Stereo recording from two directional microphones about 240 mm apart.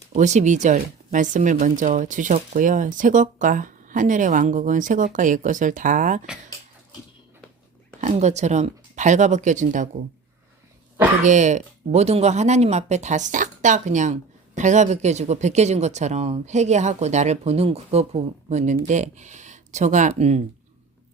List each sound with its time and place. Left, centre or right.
0.2 s speech: right
8.0 s speech: right
11.2 s speech: right